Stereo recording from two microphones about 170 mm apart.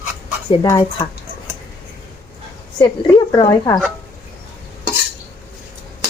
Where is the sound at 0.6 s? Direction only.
25° left (ahead or behind).